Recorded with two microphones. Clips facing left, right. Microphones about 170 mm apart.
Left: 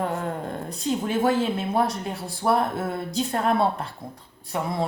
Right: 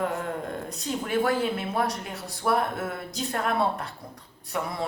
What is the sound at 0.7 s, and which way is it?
A woman's voice, 25° left (ahead or behind).